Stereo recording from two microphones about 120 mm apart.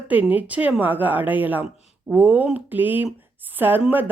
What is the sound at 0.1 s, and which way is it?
Speech, 15° right (ahead or behind).